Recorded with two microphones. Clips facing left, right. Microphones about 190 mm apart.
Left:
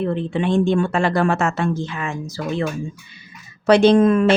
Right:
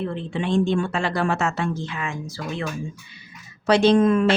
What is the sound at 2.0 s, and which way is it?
Speech, 40° left (ahead or behind).